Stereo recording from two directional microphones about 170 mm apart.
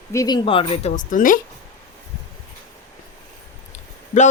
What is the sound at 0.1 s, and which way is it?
A woman's voice, 20° left (ahead or behind).